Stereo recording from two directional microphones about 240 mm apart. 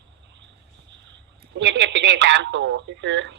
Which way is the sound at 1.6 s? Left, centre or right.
Right.